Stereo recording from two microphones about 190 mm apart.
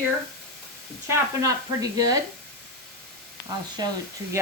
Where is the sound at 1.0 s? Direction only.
15° right (ahead or behind).